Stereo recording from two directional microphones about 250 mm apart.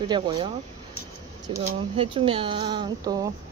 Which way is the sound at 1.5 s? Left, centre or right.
Right.